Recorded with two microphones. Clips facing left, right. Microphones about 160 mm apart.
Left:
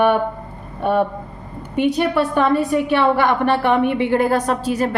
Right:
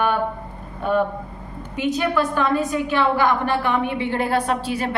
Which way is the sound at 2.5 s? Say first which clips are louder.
Left 4 dB; 60° left (ahead or behind).